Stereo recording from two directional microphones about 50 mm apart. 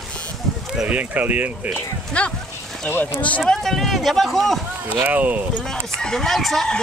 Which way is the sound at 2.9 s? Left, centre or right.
Left.